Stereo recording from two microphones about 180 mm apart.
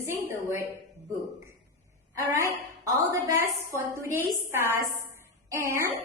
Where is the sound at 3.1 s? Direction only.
15° right (ahead or behind).